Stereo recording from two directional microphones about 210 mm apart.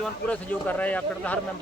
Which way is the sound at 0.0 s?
5° left (ahead or behind).